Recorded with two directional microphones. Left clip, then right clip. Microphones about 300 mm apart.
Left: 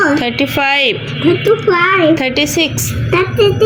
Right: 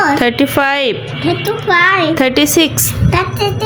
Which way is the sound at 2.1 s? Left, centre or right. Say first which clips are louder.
Right 3 dB; right.